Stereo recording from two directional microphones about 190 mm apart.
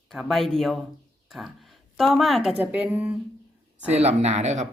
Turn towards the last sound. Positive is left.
turn(degrees=-40)  # may be behind; listen again after turning